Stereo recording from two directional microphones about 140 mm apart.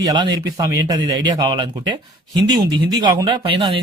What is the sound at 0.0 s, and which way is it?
Speech, 30° right (ahead or behind).